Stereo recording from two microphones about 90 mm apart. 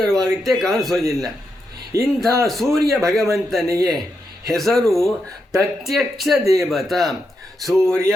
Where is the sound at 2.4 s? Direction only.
5° left (ahead or behind).